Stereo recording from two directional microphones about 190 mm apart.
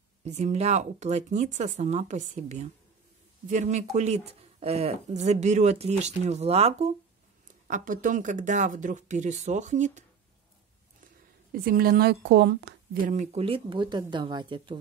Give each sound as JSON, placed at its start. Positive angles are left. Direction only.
{"t": 0.2, "sound": "speech", "side_deg": -35}
{"t": 7.6, "sound": "speech", "side_deg": -45}
{"t": 11.5, "sound": "speech", "side_deg": -50}